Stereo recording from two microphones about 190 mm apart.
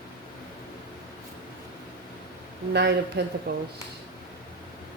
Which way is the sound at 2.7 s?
65° right (ahead or behind).